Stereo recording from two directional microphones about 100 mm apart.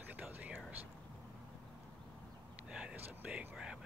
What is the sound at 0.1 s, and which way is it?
Whispering, 15° right (ahead or behind).